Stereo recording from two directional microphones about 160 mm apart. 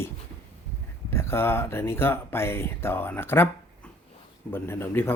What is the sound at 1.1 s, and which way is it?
Speech, 15° left (ahead or behind).